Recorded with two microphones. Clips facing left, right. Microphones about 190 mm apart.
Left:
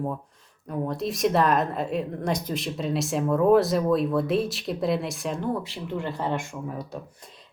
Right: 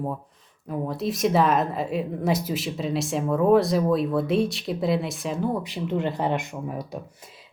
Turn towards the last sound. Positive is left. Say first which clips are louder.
# right 2 dB
turn(degrees=-15)  # may be behind; listen again after turning